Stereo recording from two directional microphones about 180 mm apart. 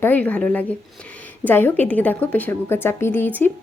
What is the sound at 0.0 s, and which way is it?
Speech, 10° left (ahead or behind).